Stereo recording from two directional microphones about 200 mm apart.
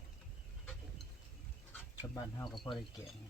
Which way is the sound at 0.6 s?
5° left (ahead or behind).